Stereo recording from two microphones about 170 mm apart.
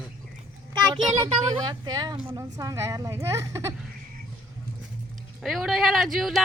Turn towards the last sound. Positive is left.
turn(degrees=0)  # may be behind; listen again after turning